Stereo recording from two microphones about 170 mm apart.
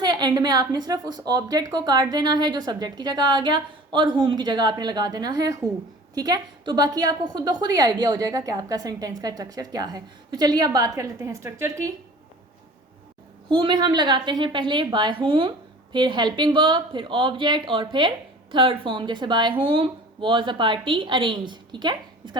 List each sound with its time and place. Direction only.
0.0 s a woman's voice: 25° right (ahead or behind)
13.5 s a woman's voice: 30° right (ahead or behind)